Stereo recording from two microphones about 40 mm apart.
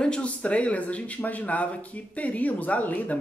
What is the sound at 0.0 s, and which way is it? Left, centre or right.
Speech, left.